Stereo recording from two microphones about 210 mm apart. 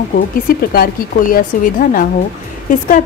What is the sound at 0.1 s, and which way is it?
A woman's voice, 45° left (ahead or behind).